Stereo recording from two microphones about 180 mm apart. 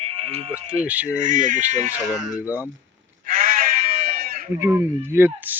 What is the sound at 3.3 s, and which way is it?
Sheep, 50° right (ahead or behind).